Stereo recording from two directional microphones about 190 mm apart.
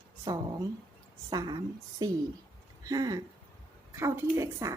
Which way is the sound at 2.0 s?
20° right (ahead or behind).